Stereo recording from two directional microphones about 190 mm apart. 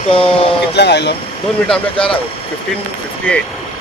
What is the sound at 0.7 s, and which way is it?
Speech, 60° left (ahead or behind).